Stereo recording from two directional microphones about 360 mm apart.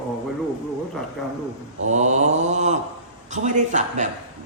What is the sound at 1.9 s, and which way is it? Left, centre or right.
Mantra, centre.